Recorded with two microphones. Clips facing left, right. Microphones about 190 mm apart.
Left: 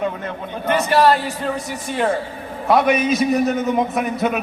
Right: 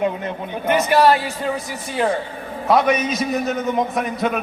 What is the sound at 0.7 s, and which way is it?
Speech, 15° right (ahead or behind).